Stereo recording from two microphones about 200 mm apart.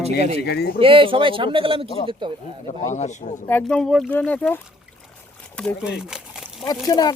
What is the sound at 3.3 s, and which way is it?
Speech, 10° left (ahead or behind).